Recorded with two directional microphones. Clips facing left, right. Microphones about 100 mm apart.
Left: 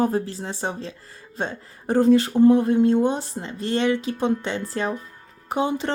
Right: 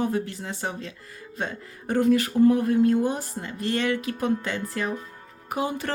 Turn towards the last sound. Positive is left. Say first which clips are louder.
# left 4 dB
turn(degrees=25)  # may be behind; listen again after turning